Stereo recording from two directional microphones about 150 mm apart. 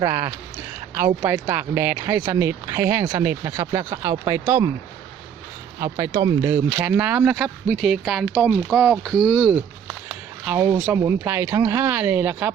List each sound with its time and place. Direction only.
0.0 s speech: 25° right (ahead or behind)
5.8 s speech: 20° right (ahead or behind)